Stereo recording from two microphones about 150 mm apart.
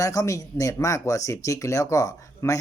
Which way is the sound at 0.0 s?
20° left (ahead or behind).